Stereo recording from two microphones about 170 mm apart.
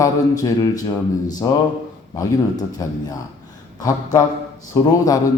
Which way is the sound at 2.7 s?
20° left (ahead or behind).